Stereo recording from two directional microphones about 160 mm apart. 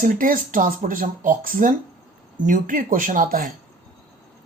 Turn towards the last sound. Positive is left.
turn(degrees=-60)  # may be behind; listen again after turning